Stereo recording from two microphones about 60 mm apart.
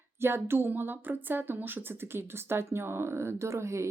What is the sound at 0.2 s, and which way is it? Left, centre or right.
Speech, right.